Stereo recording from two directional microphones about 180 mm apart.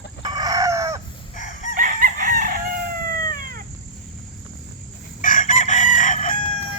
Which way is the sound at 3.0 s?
55° right (ahead or behind).